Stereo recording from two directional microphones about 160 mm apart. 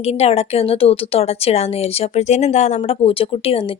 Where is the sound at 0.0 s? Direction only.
40° left (ahead or behind).